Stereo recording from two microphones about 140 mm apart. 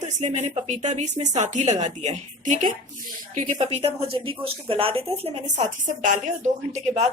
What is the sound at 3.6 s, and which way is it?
A woman's voice, 40° right (ahead or behind).